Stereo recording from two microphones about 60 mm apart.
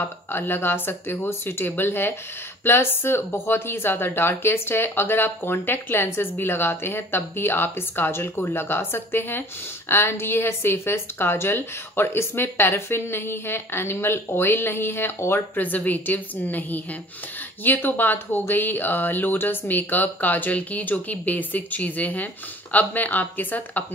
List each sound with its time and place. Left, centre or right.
0.3 s speech: left
15.5 s speech: left